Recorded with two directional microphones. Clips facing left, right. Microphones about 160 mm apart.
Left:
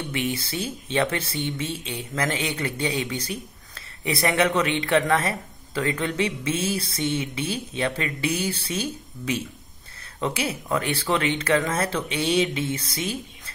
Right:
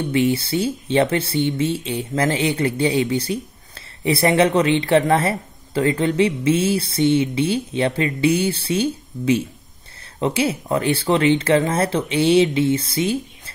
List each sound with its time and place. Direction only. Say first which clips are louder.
0.1 s speech: right 11 dB; 30° right (ahead or behind)